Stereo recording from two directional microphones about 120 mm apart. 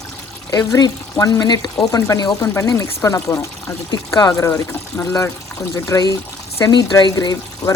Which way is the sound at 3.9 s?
30° left (ahead or behind).